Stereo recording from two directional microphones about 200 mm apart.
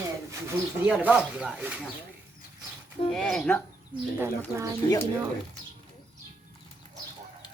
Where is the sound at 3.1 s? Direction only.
Centre (ahead or behind).